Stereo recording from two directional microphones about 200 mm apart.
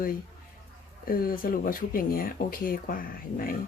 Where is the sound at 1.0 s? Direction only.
45° left (ahead or behind).